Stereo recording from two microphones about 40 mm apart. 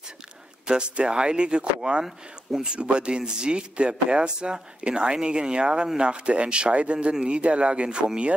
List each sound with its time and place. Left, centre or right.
0.7 s speech: right